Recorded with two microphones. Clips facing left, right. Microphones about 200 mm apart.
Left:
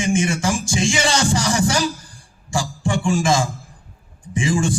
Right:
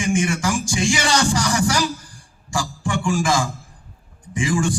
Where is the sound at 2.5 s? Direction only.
25° left (ahead or behind).